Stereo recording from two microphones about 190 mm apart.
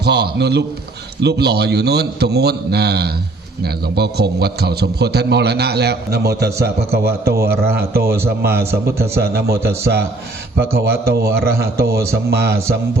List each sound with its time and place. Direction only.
0.0 s a man's voice: 60° right (ahead or behind)
11.9 s speech: 15° right (ahead or behind)
12.3 s a man's voice: 60° right (ahead or behind)